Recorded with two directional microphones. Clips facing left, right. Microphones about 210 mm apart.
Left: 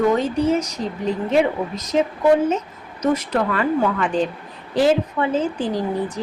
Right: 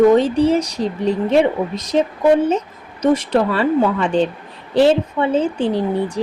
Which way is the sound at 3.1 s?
30° right (ahead or behind).